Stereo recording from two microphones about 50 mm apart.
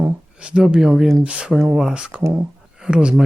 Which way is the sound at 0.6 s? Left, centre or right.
Centre.